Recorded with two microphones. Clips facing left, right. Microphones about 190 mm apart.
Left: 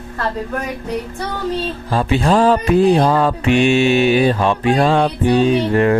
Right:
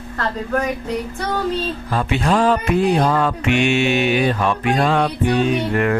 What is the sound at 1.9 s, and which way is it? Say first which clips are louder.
Music: left 4 dB; 30° left (ahead or behind).